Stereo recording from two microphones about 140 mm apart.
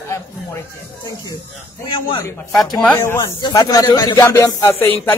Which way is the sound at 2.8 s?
15° left (ahead or behind).